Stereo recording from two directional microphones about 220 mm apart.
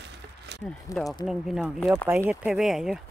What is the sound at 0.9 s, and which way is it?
Speech, 15° left (ahead or behind).